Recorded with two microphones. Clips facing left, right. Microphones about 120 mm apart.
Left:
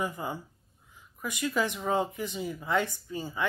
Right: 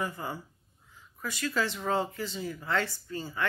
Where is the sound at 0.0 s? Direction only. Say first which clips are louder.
Left 2 dB; 15° left (ahead or behind).